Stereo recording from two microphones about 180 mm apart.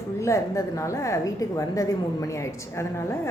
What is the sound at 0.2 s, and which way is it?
A woman's voice, 15° left (ahead or behind).